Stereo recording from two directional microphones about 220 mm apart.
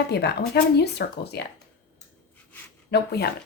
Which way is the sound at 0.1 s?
50° left (ahead or behind).